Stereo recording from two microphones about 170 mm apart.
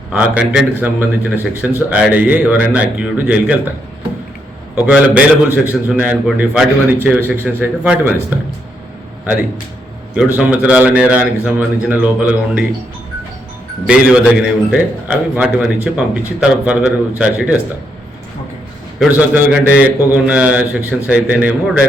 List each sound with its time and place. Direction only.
0.1 s a man's voice: 5° right (ahead or behind)
4.9 s a man's voice: 5° right (ahead or behind)
10.3 s a man's voice: 10° right (ahead or behind)
13.8 s a man's voice: 5° right (ahead or behind)
18.9 s a man's voice: 10° right (ahead or behind)